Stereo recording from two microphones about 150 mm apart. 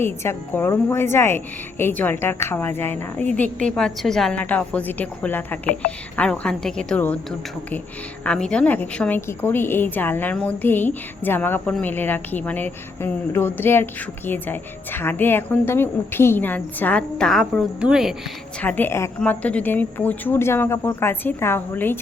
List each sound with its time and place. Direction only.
0.0 s a woman's voice: 15° left (ahead or behind)
8.2 s a woman's voice: 5° left (ahead or behind)
18.6 s a woman's voice: 10° left (ahead or behind)